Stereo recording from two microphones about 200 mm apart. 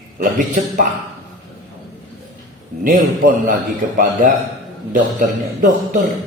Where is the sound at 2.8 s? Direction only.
45° right (ahead or behind).